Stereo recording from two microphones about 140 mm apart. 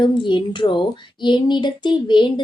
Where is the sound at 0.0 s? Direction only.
35° left (ahead or behind).